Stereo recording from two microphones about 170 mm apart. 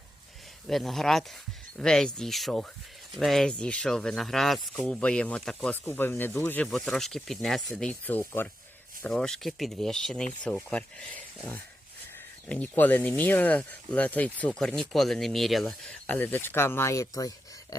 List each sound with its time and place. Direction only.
0.7 s speech: centre (ahead or behind)
12.5 s speech: 10° left (ahead or behind)